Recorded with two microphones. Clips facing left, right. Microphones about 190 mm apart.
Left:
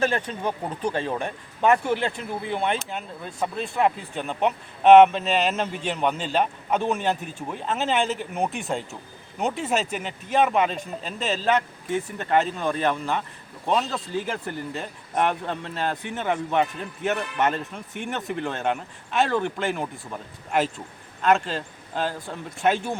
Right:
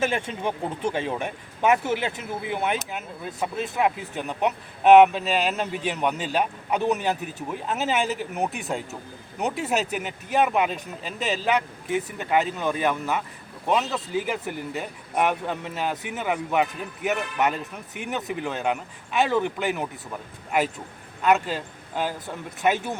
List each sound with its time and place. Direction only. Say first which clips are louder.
0.4 s speech: even; 25° right (ahead or behind)
1.0 s speech: even; 10° right (ahead or behind)
9.9 s speech: even; 5° right (ahead or behind)
12.2 s speech: left 2 dB; 5° right (ahead or behind)
21.2 s speech: even; 5° right (ahead or behind)